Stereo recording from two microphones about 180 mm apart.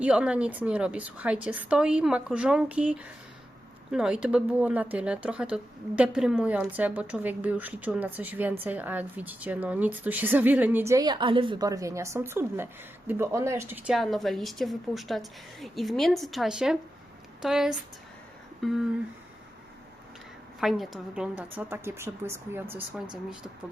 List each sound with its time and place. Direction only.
0.0 s a woman's voice: 5° right (ahead or behind)
13.9 s a woman's voice: centre (ahead or behind)
20.6 s a woman's voice: centre (ahead or behind)
21.7 s a woman's voice: 15° right (ahead or behind)